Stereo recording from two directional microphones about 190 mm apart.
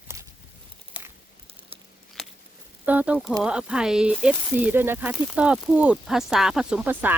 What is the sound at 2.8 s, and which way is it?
Speech, 10° right (ahead or behind).